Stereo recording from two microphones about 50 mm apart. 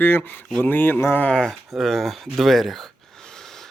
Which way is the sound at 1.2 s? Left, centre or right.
Centre.